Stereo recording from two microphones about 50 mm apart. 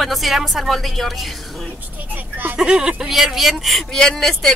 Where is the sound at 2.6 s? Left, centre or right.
Centre.